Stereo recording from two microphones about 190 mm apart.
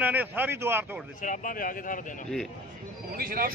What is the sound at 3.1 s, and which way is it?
Speech, 50° right (ahead or behind).